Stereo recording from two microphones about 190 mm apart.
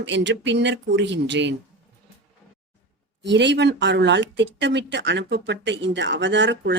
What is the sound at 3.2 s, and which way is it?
Speech, 70° right (ahead or behind).